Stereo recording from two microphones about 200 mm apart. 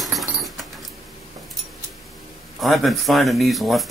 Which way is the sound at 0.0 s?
Centre (ahead or behind).